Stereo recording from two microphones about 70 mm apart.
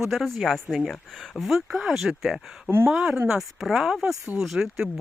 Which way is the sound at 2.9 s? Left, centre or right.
Centre.